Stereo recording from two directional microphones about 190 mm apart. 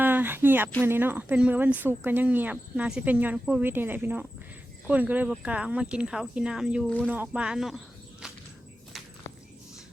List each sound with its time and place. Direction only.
0.0 s a sound: 10° right (ahead or behind)
0.8 s speech: 10° right (ahead or behind)
8.2 s walk: 5° right (ahead or behind)